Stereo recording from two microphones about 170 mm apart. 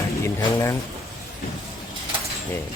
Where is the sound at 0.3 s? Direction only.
20° left (ahead or behind).